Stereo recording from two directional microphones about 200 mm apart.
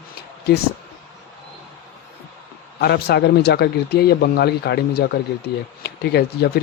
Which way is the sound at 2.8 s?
55° left (ahead or behind).